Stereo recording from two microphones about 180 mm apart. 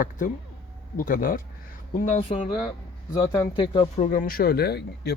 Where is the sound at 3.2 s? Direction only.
20° left (ahead or behind).